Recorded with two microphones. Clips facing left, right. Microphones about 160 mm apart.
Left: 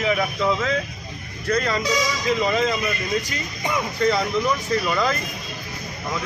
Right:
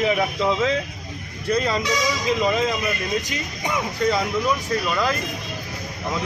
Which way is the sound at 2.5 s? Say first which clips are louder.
Even; 10° right (ahead or behind).